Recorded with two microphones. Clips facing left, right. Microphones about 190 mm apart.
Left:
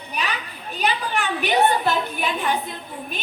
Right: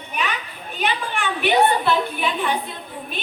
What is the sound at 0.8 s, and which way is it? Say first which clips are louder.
A woman's voice: left 1 dB; 40° left (ahead or behind).